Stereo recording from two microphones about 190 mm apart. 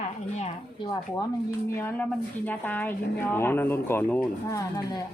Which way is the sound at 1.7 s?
10° left (ahead or behind).